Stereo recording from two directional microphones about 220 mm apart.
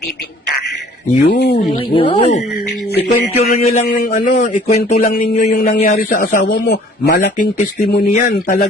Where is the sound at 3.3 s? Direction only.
35° left (ahead or behind).